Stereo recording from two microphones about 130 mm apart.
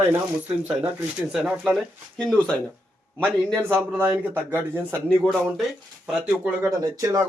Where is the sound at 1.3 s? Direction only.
5° right (ahead or behind).